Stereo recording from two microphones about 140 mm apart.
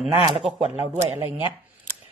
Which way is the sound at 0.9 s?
15° right (ahead or behind).